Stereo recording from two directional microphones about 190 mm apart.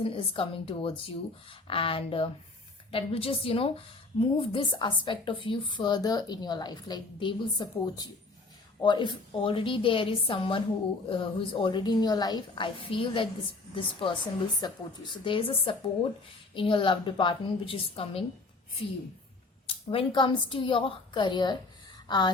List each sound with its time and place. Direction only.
0.0 s a woman's voice: 30° left (ahead or behind)
19.6 s a woman's voice: 30° left (ahead or behind)
22.0 s a sound: 20° left (ahead or behind)